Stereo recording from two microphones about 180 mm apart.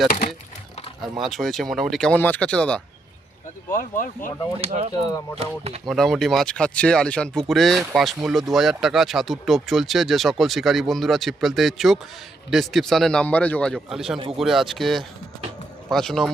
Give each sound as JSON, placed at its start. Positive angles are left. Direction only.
{"t": 1.2, "sound": "speech", "side_deg": 0}
{"t": 3.7, "sound": "speech", "side_deg": 50}
{"t": 4.6, "sound": "speech", "side_deg": -30}
{"t": 5.9, "sound": "speech", "side_deg": 0}